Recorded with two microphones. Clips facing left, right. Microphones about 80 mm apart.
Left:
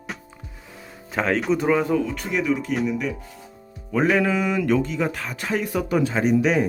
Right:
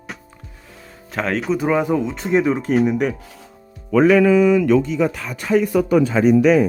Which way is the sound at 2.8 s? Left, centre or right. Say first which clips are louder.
Right 6 dB; right.